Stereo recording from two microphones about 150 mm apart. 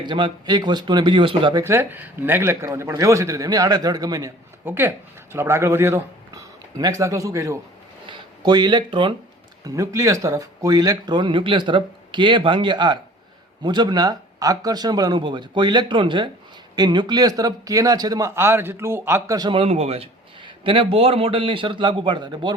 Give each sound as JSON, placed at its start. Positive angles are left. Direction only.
{"t": 0.0, "sound": "speech", "side_deg": -30}
{"t": 1.6, "sound": "speech", "side_deg": -15}
{"t": 4.6, "sound": "speech", "side_deg": -15}